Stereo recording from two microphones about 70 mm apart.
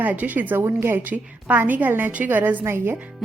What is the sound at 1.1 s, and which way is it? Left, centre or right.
A woman's voice, right.